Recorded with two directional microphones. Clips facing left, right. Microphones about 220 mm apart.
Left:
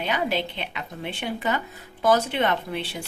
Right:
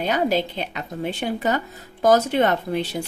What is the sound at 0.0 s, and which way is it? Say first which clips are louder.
A woman's voice: right 5 dB; 40° right (ahead or behind).